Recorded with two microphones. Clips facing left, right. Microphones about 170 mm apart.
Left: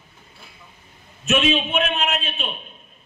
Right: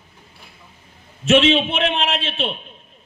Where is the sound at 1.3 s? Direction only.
90° right.